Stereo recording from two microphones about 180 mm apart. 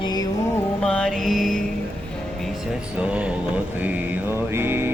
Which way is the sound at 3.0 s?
5° right (ahead or behind).